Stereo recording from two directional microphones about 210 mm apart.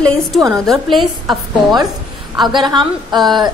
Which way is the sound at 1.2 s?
20° right (ahead or behind).